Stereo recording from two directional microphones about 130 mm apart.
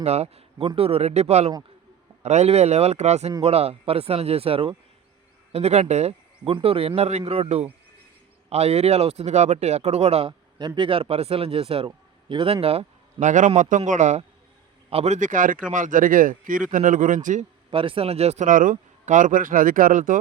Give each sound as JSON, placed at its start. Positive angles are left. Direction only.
{"t": 0.0, "sound": "speech", "side_deg": -55}
{"t": 13.1, "sound": "speech", "side_deg": -80}
{"t": 14.8, "sound": "speech", "side_deg": -55}
{"t": 17.7, "sound": "speech", "side_deg": -40}
{"t": 18.4, "sound": "speech", "side_deg": -90}